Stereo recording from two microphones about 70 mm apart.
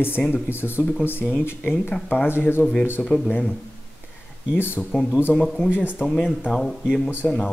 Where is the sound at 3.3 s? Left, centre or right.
Left.